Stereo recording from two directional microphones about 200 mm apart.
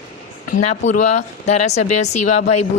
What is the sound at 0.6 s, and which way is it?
Speech, 35° left (ahead or behind).